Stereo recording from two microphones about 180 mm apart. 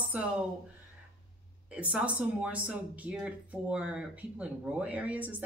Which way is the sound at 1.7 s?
5° right (ahead or behind).